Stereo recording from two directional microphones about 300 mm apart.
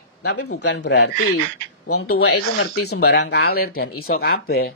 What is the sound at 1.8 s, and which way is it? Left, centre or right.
Speech, left.